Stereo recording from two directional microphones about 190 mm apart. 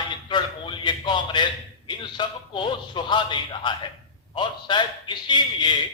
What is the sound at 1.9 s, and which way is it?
Speech, 25° left (ahead or behind).